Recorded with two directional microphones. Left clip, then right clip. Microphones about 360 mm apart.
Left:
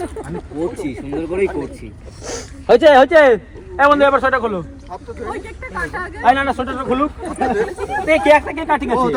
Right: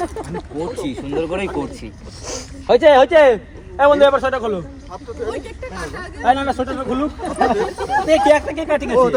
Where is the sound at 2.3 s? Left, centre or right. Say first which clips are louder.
Left 2 dB; left.